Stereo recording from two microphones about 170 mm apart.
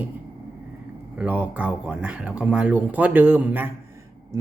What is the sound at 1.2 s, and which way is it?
Speech, 10° right (ahead or behind).